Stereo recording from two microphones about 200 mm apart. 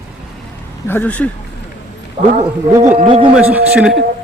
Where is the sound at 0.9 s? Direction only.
10° left (ahead or behind).